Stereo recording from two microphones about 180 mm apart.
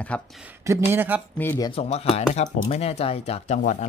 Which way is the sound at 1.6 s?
30° left (ahead or behind).